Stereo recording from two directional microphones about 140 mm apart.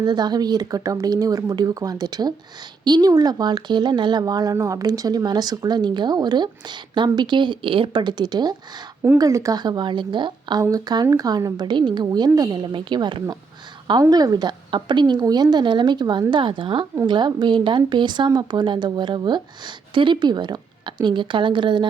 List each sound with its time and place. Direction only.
0.0 s a woman's voice: 30° right (ahead or behind)